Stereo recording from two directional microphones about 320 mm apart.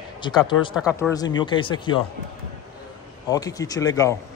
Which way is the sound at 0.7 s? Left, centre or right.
Centre.